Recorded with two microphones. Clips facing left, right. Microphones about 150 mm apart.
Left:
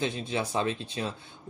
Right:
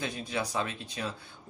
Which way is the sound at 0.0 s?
25° left (ahead or behind).